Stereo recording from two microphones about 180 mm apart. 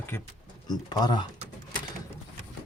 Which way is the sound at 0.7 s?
20° left (ahead or behind).